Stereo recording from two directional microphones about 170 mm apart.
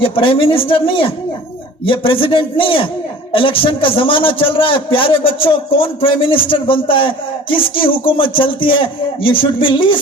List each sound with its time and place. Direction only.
0.0 s a man's voice: 30° left (ahead or behind)